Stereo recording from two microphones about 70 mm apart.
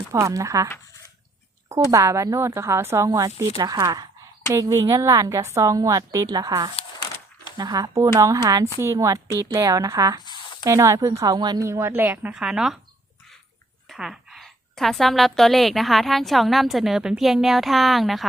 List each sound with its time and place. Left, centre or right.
0.1 s a woman's voice: right
1.9 s a woman's voice: right
3.1 s speech: right
4.5 s a woman's voice: right
7.5 s a woman's voice: right
11.3 s a woman's voice: right
11.6 s speech: right
12.0 s speech: right
12.3 s speech: centre
13.8 s a woman's voice: centre